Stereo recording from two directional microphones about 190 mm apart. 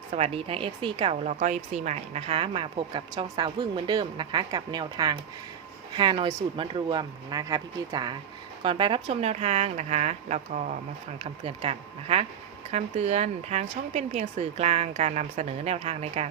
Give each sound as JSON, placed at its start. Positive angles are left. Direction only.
{"t": 0.1, "sound": "a woman's voice", "side_deg": -30}